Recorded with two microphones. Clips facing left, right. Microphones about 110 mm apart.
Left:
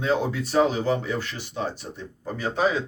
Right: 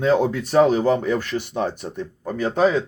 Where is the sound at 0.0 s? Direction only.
45° right (ahead or behind).